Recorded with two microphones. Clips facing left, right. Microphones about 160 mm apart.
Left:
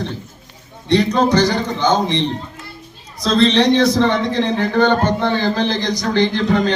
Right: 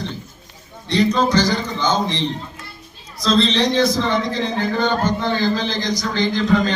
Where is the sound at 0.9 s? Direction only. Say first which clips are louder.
Left 3 dB; 60° left (ahead or behind).